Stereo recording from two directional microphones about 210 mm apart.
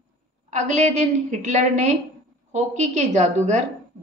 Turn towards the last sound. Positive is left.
turn(degrees=-35)  # may be behind; listen again after turning